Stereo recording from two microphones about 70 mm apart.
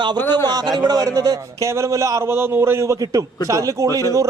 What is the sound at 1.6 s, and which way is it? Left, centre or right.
Speech, right.